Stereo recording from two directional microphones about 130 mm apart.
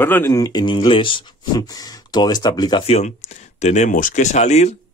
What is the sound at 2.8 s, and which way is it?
Speech, 55° left (ahead or behind).